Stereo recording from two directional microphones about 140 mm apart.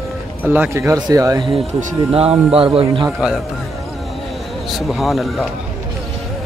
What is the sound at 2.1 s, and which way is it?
Speech, 45° right (ahead or behind).